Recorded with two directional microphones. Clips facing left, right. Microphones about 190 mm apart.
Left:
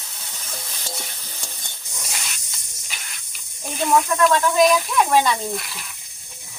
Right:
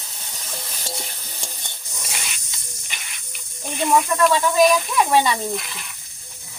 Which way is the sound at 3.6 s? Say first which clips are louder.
Even; centre (ahead or behind).